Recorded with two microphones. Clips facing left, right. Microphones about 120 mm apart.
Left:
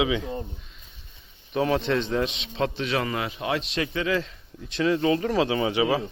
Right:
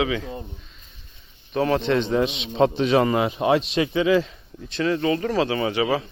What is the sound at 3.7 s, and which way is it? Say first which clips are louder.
Speech: right 6 dB; 15° right (ahead or behind).